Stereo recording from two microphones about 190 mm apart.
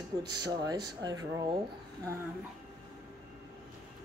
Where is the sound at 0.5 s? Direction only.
20° right (ahead or behind).